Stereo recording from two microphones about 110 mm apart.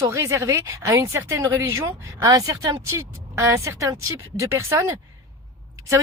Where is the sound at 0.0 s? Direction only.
30° right (ahead or behind).